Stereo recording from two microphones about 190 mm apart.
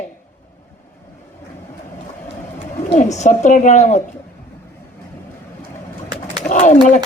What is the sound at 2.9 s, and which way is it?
A woman's voice, 35° left (ahead or behind).